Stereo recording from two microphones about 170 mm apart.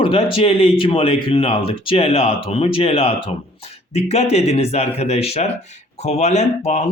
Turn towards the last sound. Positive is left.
turn(degrees=40)  # may be behind; listen again after turning